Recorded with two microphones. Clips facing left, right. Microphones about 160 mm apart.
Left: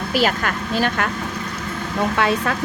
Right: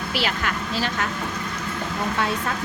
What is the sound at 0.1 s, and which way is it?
Speech, 45° left (ahead or behind).